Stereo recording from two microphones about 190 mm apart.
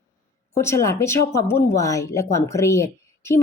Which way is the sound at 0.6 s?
15° left (ahead or behind).